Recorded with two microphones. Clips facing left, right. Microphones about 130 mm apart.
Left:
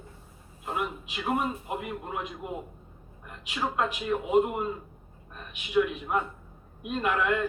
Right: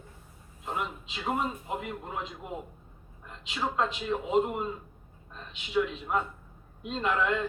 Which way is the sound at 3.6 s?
10° left (ahead or behind).